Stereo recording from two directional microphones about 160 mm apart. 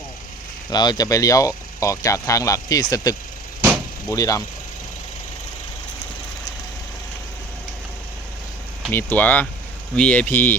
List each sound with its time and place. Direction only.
0.7 s speech: 25° left (ahead or behind)
8.9 s speech: 10° left (ahead or behind)